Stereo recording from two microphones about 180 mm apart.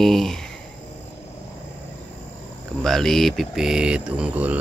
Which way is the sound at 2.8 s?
Centre (ahead or behind).